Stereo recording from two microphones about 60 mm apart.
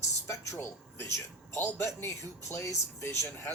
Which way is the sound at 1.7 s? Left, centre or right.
Left.